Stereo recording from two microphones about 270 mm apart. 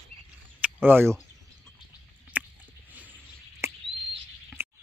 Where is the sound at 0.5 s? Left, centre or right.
Centre.